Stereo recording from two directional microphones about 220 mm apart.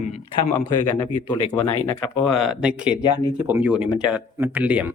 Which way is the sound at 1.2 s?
15° left (ahead or behind).